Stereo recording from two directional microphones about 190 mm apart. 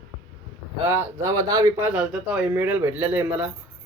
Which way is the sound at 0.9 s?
15° right (ahead or behind).